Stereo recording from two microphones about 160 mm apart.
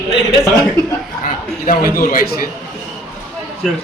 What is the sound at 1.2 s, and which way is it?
A man's voice, 60° left (ahead or behind).